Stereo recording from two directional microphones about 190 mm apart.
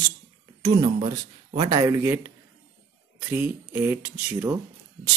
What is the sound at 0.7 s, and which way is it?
Speech, 25° right (ahead or behind).